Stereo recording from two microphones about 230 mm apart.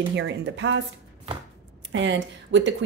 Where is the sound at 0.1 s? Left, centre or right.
Right.